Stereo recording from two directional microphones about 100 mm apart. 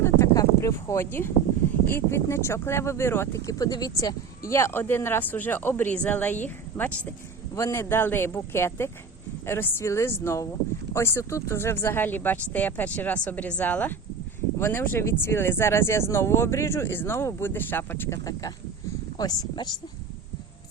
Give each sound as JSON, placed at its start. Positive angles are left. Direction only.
{"t": 0.0, "sound": "a sound", "side_deg": 30}
{"t": 1.9, "sound": "speech", "side_deg": 25}
{"t": 3.4, "sound": "speech", "side_deg": 40}
{"t": 7.5, "sound": "speech", "side_deg": 30}
{"t": 19.1, "sound": "speech", "side_deg": 40}